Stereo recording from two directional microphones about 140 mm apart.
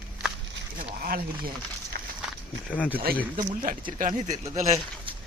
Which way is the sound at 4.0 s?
60° right (ahead or behind).